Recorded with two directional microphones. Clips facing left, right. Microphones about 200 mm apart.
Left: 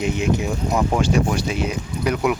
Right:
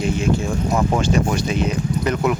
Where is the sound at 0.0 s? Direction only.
20° left (ahead or behind).